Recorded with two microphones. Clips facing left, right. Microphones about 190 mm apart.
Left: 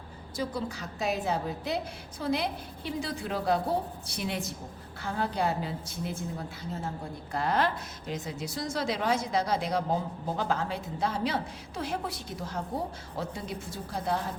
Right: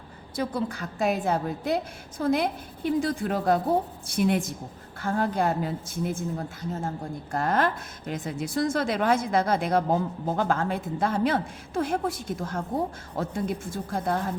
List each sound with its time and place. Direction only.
0.3 s a woman's voice: 55° right (ahead or behind)